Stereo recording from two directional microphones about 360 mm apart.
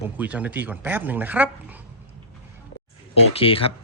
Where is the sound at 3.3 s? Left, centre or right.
Centre.